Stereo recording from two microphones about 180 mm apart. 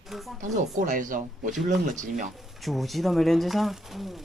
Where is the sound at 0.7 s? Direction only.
45° right (ahead or behind).